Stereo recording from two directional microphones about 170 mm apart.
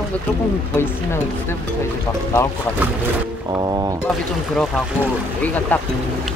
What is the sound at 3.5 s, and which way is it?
Speech, 25° right (ahead or behind).